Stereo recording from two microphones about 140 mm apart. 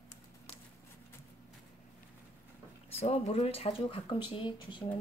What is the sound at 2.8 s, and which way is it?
Speech, 45° left (ahead or behind).